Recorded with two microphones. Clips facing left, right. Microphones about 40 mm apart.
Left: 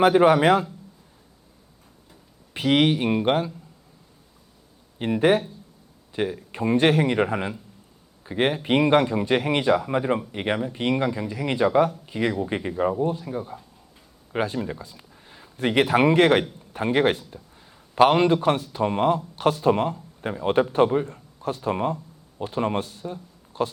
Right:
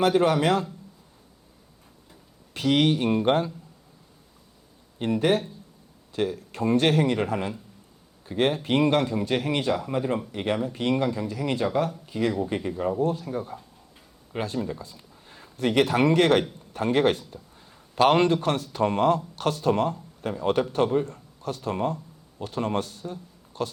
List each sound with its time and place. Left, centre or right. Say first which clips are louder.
0.0 s a man's voice: left 5 dB; left
2.5 s a man's voice: left 2 dB; left
4.9 s a man's voice: left 3 dB; left
12.9 s speech: even; centre
14.3 s speech: left 3 dB; left
15.5 s a man's voice: left 2 dB; left
18.7 s a man's voice: even; centre